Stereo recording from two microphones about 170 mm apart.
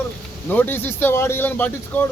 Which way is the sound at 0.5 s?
10° left (ahead or behind).